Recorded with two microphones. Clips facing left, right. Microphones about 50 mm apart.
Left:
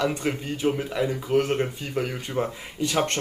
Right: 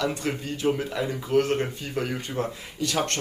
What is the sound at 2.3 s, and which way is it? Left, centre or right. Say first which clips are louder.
Speech: left 2 dB; centre.